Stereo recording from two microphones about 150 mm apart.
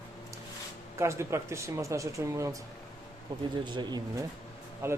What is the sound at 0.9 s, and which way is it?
Speech, 20° right (ahead or behind).